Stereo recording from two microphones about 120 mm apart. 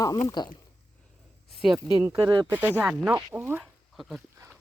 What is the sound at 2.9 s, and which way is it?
Speech, 10° right (ahead or behind).